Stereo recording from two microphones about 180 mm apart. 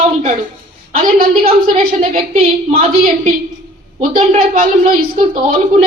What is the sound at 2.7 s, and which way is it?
Speech, 30° right (ahead or behind).